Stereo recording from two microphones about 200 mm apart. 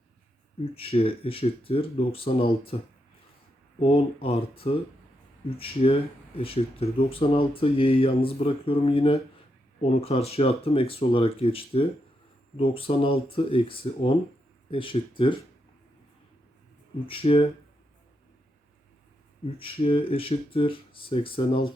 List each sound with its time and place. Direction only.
0.6 s speech: 30° left (ahead or behind)
3.8 s speech: 30° left (ahead or behind)
17.1 s speech: 25° left (ahead or behind)
19.5 s speech: 30° left (ahead or behind)